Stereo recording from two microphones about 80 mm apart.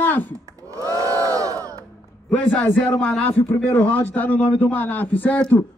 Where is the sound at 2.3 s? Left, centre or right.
Centre.